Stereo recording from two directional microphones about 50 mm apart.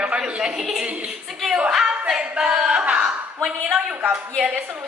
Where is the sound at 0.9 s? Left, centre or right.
Right.